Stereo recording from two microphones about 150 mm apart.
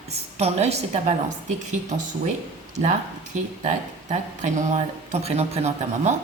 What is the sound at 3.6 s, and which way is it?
Speech, 55° right (ahead or behind).